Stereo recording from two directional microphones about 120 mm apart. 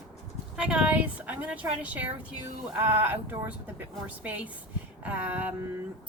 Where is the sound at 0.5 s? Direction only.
10° right (ahead or behind).